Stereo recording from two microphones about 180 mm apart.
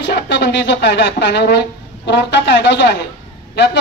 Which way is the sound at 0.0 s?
75° left (ahead or behind).